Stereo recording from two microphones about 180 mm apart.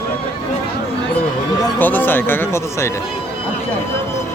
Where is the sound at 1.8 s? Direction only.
10° left (ahead or behind).